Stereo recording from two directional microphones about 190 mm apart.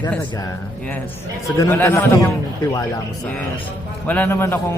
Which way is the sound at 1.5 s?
10° left (ahead or behind).